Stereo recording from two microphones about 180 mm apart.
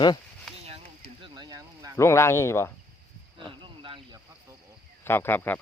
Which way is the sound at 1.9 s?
15° left (ahead or behind).